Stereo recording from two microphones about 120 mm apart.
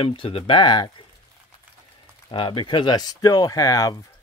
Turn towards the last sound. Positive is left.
turn(degrees=30)  # may be behind; listen again after turning